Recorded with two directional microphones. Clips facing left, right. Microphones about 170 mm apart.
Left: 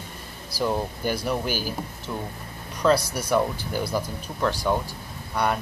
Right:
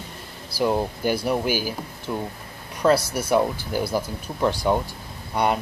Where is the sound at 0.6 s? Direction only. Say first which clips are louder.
Right 3 dB; 10° right (ahead or behind).